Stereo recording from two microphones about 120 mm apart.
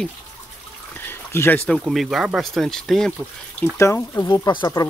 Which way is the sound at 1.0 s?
20° left (ahead or behind).